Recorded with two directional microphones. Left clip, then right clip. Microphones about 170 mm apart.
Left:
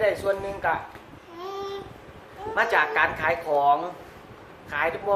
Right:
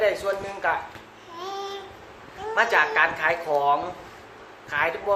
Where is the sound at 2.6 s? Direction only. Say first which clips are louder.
Right 2 dB; 20° left (ahead or behind).